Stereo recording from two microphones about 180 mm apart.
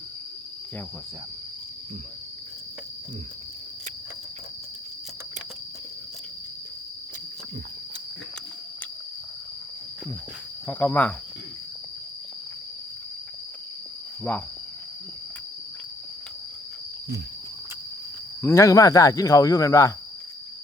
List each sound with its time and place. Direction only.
10.7 s speech: 10° left (ahead or behind)
14.3 s speech: 10° left (ahead or behind)
18.4 s speech: 15° left (ahead or behind)